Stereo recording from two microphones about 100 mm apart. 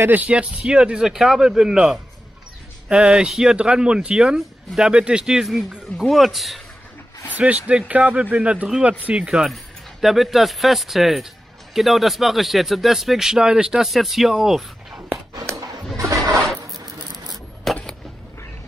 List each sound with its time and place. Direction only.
0.0 s speech: 15° right (ahead or behind); by 6.6 s centre (ahead or behind)
7.3 s speech: 15° right (ahead or behind)
15.3 s a sound: 35° right (ahead or behind)
17.7 s vehicle: centre (ahead or behind)